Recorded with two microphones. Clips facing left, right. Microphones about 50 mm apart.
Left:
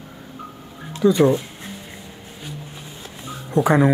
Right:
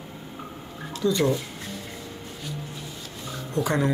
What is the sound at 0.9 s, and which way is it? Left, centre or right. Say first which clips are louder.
Speech: left 7 dB; left.